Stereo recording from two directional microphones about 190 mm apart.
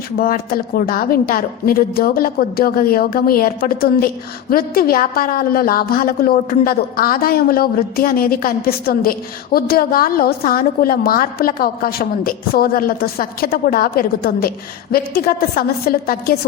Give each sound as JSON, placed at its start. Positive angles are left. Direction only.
{"t": 0.2, "sound": "a woman's voice", "side_deg": 50}